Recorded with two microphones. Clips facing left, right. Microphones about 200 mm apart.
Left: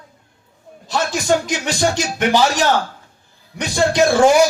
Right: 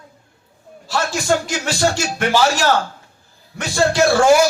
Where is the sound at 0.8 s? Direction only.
20° left (ahead or behind).